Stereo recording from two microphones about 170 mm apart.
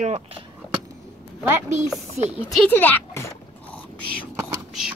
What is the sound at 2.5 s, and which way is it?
Speech, 10° left (ahead or behind).